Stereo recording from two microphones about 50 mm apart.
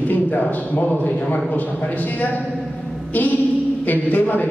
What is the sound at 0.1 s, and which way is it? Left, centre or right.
A man's voice, left.